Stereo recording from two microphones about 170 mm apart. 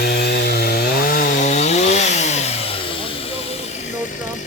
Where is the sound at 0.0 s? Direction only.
70° left (ahead or behind); by 2.5 s 40° left (ahead or behind).